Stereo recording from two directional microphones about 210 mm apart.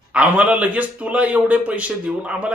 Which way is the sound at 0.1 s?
5° right (ahead or behind).